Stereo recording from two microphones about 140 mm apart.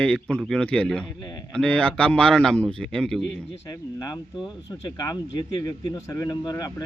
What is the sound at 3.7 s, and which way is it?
Speech, 30° left (ahead or behind).